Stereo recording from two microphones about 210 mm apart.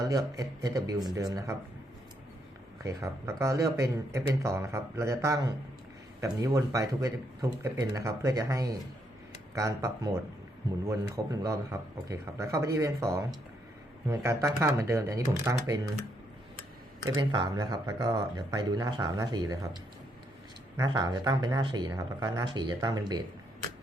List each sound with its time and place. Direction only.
0.0 s speech: 15° right (ahead or behind)
2.8 s speech: 15° right (ahead or behind)
17.1 s speech: 20° right (ahead or behind)
20.7 s speech: 20° right (ahead or behind)